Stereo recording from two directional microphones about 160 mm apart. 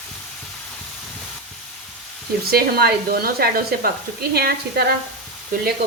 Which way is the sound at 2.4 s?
75° right (ahead or behind).